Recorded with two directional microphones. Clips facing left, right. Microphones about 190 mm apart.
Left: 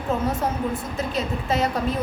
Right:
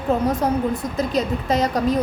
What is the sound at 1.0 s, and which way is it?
Speech, 40° right (ahead or behind).